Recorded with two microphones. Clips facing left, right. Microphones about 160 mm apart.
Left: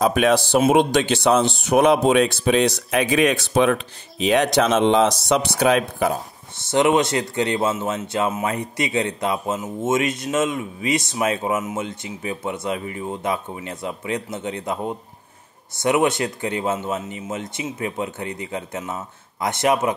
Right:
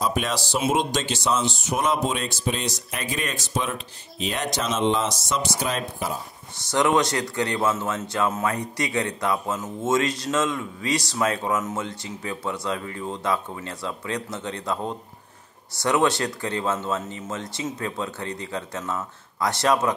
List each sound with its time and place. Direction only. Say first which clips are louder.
0.0 s speech: left 8 dB; 65° left (ahead or behind)
6.6 s a man's voice: left 3 dB; 25° left (ahead or behind)